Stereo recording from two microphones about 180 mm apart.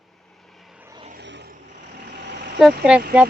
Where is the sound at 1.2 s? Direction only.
70° right (ahead or behind).